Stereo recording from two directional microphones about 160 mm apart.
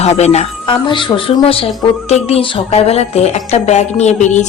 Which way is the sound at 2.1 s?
40° left (ahead or behind).